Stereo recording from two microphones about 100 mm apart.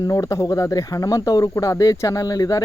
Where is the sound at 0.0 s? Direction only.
35° left (ahead or behind).